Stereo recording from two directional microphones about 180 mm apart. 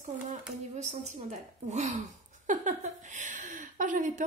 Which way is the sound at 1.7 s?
40° right (ahead or behind).